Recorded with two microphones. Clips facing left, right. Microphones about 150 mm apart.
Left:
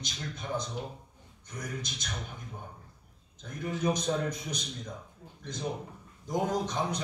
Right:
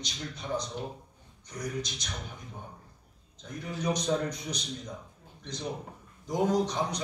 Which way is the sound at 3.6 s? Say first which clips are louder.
Left 1 dB; 50° left (ahead or behind).